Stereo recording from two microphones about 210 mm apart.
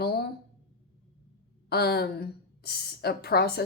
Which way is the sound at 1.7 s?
50° left (ahead or behind).